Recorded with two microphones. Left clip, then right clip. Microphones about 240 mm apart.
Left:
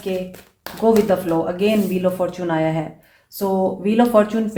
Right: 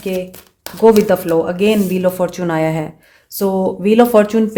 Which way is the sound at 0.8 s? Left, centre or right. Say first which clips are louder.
Right 6 dB; right.